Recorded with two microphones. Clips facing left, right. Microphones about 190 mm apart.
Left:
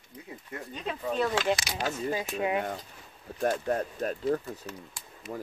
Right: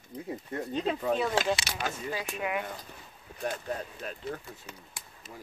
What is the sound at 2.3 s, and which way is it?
Speech, 35° left (ahead or behind).